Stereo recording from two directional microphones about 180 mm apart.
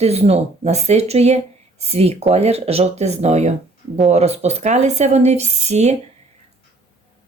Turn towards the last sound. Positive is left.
turn(degrees=-40)  # may be behind; listen again after turning